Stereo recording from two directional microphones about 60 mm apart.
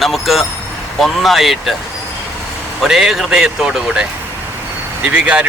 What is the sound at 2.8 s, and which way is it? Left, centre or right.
Speech, centre.